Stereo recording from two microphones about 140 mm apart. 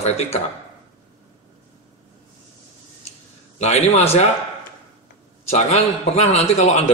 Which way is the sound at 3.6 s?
50° left (ahead or behind).